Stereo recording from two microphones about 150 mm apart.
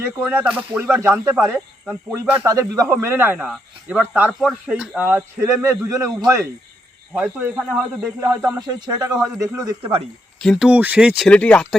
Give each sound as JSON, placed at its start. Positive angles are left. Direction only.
{"t": 0.0, "sound": "speech", "side_deg": -10}
{"t": 7.1, "sound": "speech", "side_deg": -10}
{"t": 8.4, "sound": "speech", "side_deg": -25}
{"t": 10.4, "sound": "speech", "side_deg": 5}
{"t": 10.7, "sound": "speech", "side_deg": -10}
{"t": 11.3, "sound": "speech", "side_deg": 10}